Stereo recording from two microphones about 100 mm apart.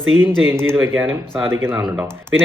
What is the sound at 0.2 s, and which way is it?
Speech, 25° right (ahead or behind).